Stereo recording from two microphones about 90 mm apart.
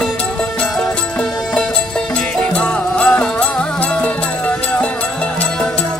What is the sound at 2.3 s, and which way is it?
Music, 10° left (ahead or behind).